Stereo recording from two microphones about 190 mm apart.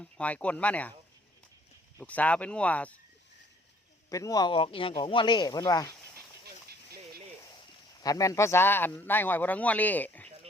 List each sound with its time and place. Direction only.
0.0 s speech: 5° left (ahead or behind)
2.0 s speech: 10° left (ahead or behind)
4.1 s speech: 20° left (ahead or behind)
8.0 s speech: 15° left (ahead or behind)